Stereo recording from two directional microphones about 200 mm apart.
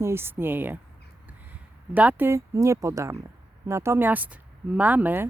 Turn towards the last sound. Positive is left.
turn(degrees=-10)  # may be behind; listen again after turning